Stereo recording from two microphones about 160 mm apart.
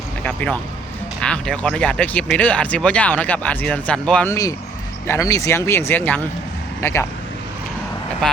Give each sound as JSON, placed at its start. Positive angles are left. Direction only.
{"t": 0.2, "sound": "speech", "side_deg": 5}
{"t": 4.3, "sound": "speech", "side_deg": 20}